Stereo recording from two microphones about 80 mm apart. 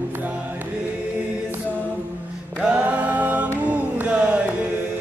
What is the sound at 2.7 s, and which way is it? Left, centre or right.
A capella, centre.